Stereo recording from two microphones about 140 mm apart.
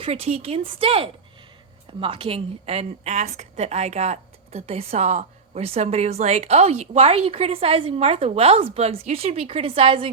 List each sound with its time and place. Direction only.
0.0 s a woman's voice: 45° right (ahead or behind)